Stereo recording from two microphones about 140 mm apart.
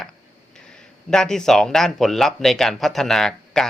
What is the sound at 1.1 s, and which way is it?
A man's voice, 5° left (ahead or behind).